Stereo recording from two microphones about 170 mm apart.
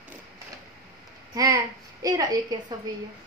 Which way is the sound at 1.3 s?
20° right (ahead or behind).